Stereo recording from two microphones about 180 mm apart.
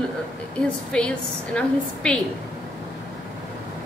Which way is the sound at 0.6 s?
5° left (ahead or behind).